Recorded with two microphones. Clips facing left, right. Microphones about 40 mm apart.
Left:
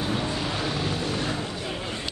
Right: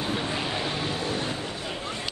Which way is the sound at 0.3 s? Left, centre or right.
Right.